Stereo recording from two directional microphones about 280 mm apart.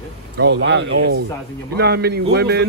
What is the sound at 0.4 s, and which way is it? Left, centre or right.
Speech, right.